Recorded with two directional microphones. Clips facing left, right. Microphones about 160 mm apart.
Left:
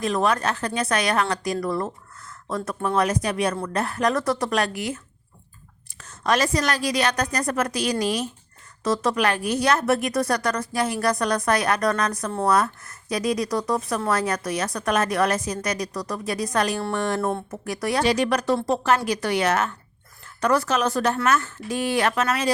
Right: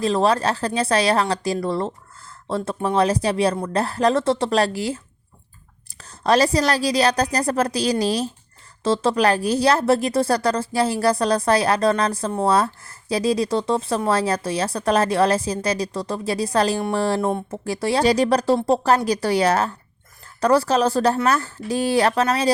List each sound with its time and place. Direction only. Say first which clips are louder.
0.0 s speech: right 4 dB; 30° right (ahead or behind)
6.0 s speech: right 5 dB; 35° right (ahead or behind)
17.2 s speech: right 3 dB; 15° right (ahead or behind)
17.5 s speech: right 3 dB; 30° right (ahead or behind)